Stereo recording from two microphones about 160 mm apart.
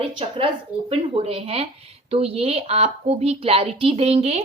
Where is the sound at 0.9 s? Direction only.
40° right (ahead or behind).